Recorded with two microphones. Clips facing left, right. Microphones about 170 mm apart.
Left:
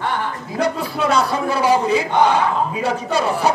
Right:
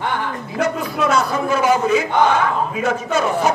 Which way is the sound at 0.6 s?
35° left (ahead or behind).